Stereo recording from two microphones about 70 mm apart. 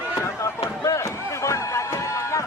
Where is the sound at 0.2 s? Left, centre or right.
Left.